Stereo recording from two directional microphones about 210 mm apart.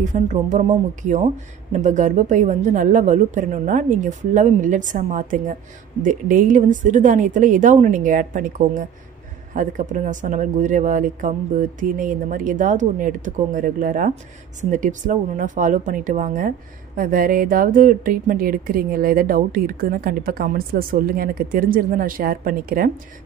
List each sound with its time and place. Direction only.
0.0 s speech: 35° right (ahead or behind)